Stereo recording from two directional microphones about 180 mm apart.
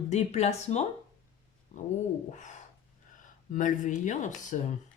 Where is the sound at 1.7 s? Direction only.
40° left (ahead or behind).